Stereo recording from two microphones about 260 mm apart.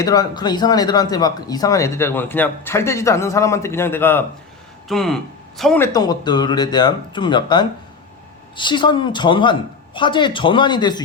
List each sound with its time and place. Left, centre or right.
0.0 s speech: centre